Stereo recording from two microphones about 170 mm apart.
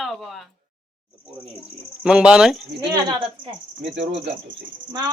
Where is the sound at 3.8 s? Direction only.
90° right.